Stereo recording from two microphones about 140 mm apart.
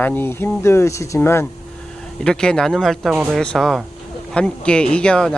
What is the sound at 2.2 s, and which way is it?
Speech, 5° left (ahead or behind).